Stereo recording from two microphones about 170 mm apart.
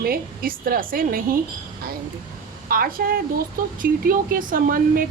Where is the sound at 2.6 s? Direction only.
60° right (ahead or behind).